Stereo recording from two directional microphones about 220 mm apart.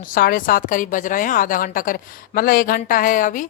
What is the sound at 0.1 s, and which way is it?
A woman's voice, 40° left (ahead or behind).